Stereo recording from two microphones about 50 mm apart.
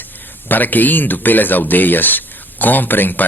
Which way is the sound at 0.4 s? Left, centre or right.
Left.